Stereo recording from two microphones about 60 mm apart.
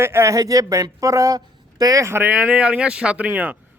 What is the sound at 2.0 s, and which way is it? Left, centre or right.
Speech, right.